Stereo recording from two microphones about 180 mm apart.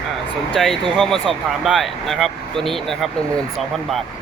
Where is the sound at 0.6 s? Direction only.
Centre (ahead or behind).